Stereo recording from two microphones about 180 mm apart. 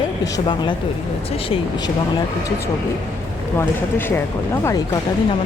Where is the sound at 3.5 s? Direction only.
10° left (ahead or behind).